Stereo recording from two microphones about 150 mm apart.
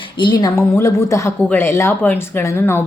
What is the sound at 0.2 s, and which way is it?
A woman's voice, 30° left (ahead or behind).